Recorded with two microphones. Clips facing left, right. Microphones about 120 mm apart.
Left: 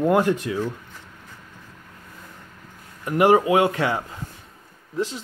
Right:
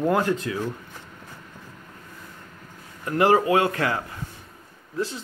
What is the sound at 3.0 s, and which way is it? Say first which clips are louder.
Speech: left 2 dB; 15° left (ahead or behind).